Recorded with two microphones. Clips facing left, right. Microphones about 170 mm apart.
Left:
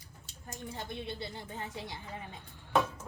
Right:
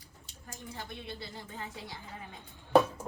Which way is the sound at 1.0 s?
20° left (ahead or behind).